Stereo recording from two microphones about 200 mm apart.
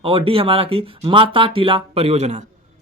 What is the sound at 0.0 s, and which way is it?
Speech, 25° right (ahead or behind).